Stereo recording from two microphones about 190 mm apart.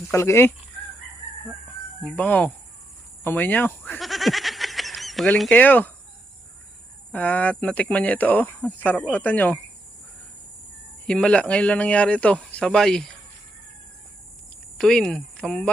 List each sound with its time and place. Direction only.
0.1 s speech: 15° left (ahead or behind)
2.0 s speech: 10° left (ahead or behind)
7.1 s speech: 5° left (ahead or behind)
11.0 s speech: 5° left (ahead or behind)
14.8 s a woman's voice: 5° left (ahead or behind)